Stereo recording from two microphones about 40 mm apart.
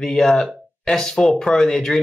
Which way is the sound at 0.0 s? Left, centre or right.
Centre.